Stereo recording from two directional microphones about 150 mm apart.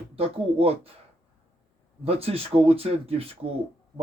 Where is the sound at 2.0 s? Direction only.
40° right (ahead or behind).